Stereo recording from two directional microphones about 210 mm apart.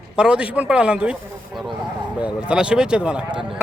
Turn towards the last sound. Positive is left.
turn(degrees=-5)  # may be behind; listen again after turning